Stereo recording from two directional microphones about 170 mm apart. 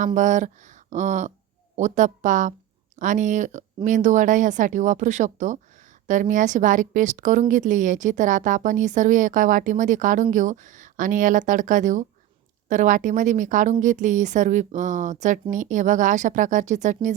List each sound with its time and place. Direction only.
0.0 s a woman's voice: 45° right (ahead or behind)